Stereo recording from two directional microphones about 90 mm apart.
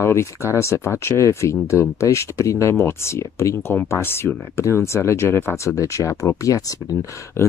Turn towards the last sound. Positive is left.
turn(degrees=40)  # may be behind; listen again after turning